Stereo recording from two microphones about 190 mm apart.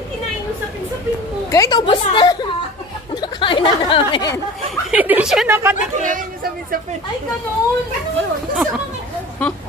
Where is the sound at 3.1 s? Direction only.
25° left (ahead or behind).